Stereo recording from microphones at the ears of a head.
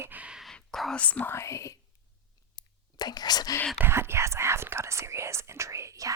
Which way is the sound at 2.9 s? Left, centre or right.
Left.